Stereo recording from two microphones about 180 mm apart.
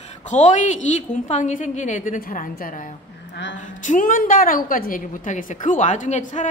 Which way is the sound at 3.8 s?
45° left (ahead or behind).